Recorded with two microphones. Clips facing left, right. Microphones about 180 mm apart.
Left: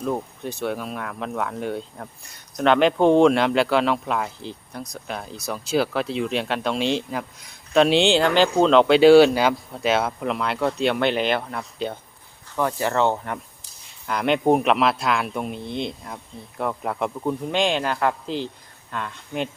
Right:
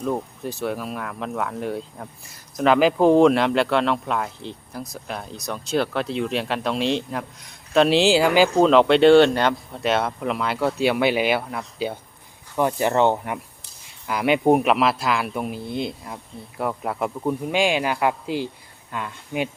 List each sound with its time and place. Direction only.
0.0 s speech: centre (ahead or behind)
12.5 s speech: 20° right (ahead or behind)